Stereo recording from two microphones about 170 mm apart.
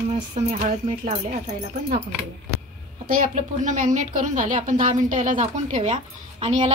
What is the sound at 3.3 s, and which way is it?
A woman's voice, 45° right (ahead or behind).